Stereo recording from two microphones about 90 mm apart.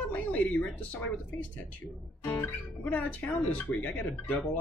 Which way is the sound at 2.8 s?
15° left (ahead or behind).